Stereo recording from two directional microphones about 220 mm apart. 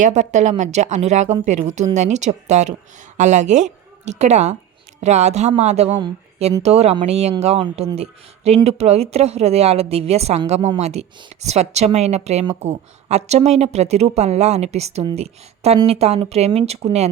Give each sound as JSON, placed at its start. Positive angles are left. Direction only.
{"t": 0.0, "sound": "a woman's voice", "side_deg": -35}